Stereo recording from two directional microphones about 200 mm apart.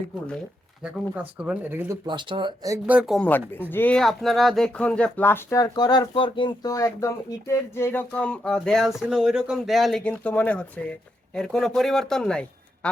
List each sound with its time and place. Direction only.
0.8 s speech: 5° right (ahead or behind)
2.0 s speech: 25° right (ahead or behind)
2.7 s speech: 5° right (ahead or behind)